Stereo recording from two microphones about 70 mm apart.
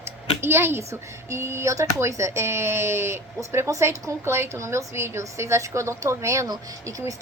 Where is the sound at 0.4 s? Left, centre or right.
Right.